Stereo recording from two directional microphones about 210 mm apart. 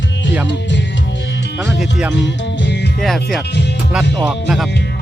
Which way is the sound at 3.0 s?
Centre (ahead or behind).